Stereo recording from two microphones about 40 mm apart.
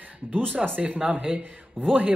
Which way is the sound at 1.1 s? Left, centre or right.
Right.